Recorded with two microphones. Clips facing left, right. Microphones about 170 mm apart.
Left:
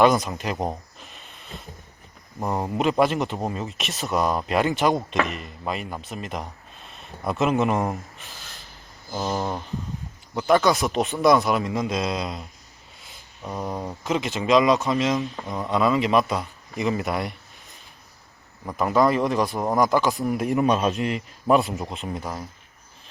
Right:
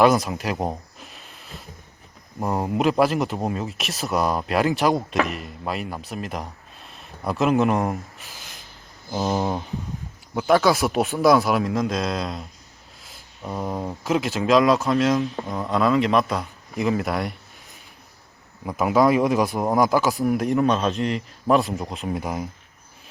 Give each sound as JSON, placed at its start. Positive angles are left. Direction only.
{"t": 0.0, "sound": "speech", "side_deg": -5}
{"t": 9.1, "sound": "speech", "side_deg": -15}
{"t": 10.3, "sound": "speech", "side_deg": -5}
{"t": 18.6, "sound": "speech", "side_deg": -10}
{"t": 22.2, "sound": "speech", "side_deg": -15}